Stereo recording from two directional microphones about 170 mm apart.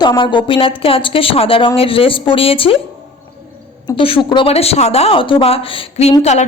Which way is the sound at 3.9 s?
30° left (ahead or behind).